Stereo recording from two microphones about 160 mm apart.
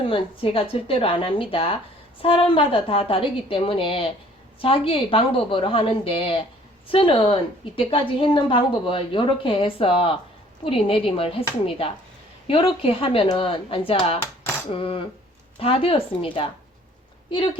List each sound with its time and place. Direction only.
0.1 s a woman's voice: 35° left (ahead or behind)